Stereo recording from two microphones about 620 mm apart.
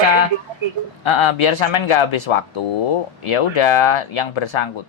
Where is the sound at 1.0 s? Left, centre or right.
Left.